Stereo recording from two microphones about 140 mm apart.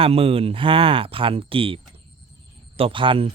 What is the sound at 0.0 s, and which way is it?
Speech, 45° right (ahead or behind).